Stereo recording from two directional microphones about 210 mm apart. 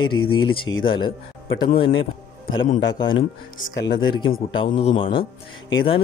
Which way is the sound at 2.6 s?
35° left (ahead or behind).